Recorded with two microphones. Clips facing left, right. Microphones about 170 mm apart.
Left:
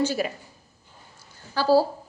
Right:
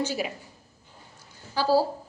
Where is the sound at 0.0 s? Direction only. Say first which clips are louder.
Left 4 dB; 15° right (ahead or behind).